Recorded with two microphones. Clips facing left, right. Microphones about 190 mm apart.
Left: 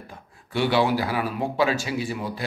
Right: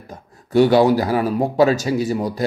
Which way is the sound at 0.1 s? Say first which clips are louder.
Right 12 dB; 40° right (ahead or behind).